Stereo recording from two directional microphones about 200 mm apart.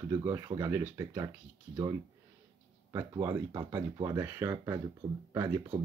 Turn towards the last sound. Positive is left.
turn(degrees=-15)  # may be behind; listen again after turning